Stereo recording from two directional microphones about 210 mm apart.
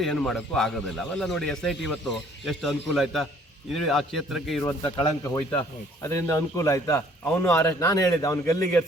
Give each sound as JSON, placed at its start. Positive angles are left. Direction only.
{"t": 0.0, "sound": "a man's voice", "side_deg": 5}
{"t": 4.9, "sound": "a man's voice", "side_deg": 15}